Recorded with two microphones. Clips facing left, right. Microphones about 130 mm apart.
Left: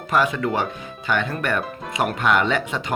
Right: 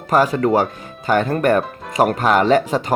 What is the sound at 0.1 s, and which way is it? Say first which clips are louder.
Speech: right 6 dB; 40° right (ahead or behind).